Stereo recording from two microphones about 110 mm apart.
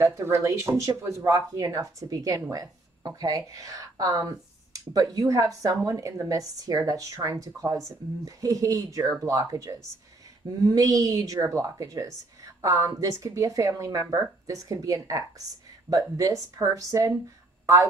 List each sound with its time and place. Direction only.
0.0 s speech: 25° right (ahead or behind)